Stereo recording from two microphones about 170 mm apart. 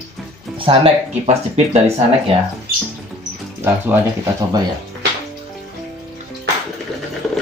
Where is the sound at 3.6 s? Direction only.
15° right (ahead or behind).